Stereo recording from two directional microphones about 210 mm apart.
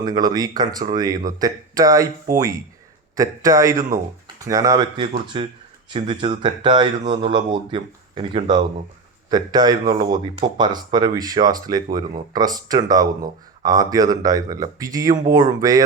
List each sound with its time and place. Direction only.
0.0 s speech: 20° right (ahead or behind)